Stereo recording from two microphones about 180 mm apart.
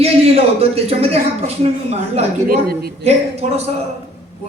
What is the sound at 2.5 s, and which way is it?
Speech, 60° right (ahead or behind).